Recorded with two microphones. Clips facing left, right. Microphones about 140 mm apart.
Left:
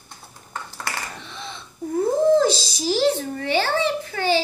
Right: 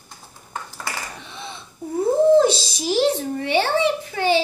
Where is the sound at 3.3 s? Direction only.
15° right (ahead or behind).